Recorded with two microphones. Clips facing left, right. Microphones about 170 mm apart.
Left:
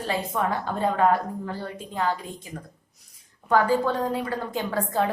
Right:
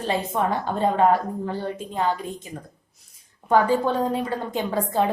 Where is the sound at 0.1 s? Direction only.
25° right (ahead or behind).